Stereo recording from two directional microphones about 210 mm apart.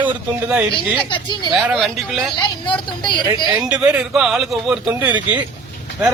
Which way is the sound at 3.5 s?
5° right (ahead or behind).